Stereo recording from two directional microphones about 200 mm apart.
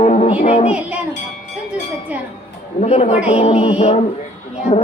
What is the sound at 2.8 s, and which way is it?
Music, 35° left (ahead or behind).